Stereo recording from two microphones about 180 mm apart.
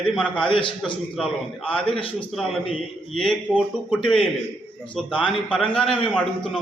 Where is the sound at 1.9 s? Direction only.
30° left (ahead or behind).